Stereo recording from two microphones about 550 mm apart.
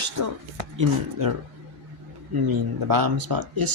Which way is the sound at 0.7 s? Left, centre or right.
Right.